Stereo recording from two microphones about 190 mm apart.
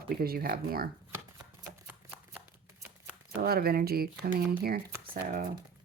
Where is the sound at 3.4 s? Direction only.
55° right (ahead or behind).